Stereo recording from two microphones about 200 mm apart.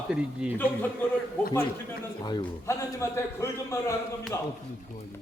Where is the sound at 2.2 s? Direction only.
20° left (ahead or behind).